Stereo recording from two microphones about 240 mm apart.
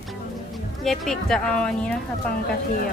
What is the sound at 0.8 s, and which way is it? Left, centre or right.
A child's voice, centre.